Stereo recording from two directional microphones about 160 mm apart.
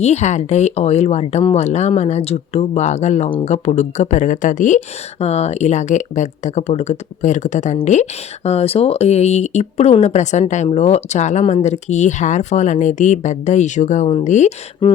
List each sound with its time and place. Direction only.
0.0 s speech: 45° left (ahead or behind)
5.2 s speech: 40° left (ahead or behind)
14.8 s speech: 30° left (ahead or behind)